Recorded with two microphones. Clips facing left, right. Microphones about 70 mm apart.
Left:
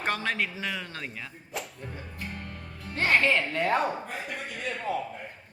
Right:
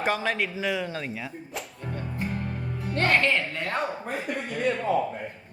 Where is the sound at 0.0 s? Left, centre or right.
Centre.